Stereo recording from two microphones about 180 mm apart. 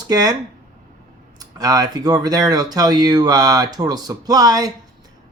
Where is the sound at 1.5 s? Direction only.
20° right (ahead or behind).